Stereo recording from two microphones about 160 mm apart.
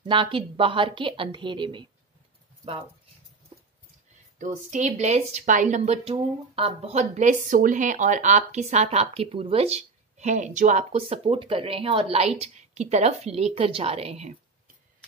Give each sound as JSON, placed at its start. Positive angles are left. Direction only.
{"t": 0.0, "sound": "a woman's voice", "side_deg": -30}
{"t": 4.4, "sound": "speech", "side_deg": -50}